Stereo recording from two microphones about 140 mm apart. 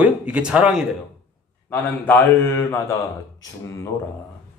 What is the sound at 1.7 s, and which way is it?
A man's voice, 15° left (ahead or behind).